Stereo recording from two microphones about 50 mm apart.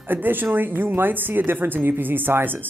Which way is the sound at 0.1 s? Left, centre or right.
Right.